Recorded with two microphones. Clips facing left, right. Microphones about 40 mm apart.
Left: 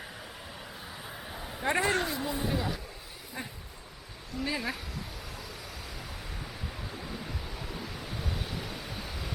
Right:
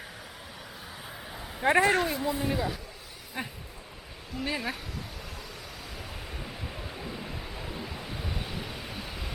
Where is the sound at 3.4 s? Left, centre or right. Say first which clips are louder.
Right 4 dB; right.